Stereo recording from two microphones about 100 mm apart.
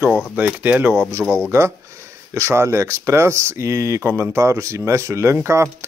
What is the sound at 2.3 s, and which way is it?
Speech, 25° right (ahead or behind).